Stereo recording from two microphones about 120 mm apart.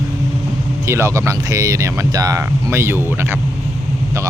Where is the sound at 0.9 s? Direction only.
25° right (ahead or behind).